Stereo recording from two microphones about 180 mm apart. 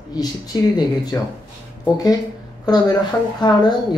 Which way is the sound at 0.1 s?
20° left (ahead or behind).